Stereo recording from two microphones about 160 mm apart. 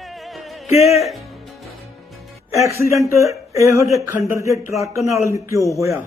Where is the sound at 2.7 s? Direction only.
15° right (ahead or behind).